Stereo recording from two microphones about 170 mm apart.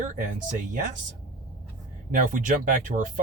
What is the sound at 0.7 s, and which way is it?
Speech, 50° right (ahead or behind).